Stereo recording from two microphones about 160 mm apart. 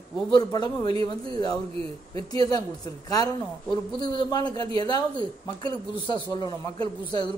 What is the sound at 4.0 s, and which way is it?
A man's voice, 25° left (ahead or behind).